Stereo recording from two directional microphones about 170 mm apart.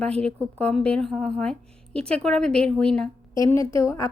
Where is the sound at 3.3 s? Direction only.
20° left (ahead or behind).